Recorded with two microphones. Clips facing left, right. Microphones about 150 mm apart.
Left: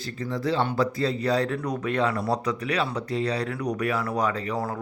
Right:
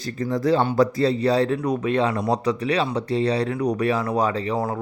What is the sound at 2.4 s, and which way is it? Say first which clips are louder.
A man's voice: right 5 dB; 30° right (ahead or behind).